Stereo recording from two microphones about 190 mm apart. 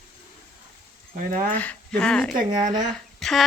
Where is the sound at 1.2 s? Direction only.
45° right (ahead or behind).